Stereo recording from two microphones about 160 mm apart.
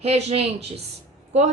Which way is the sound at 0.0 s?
40° right (ahead or behind).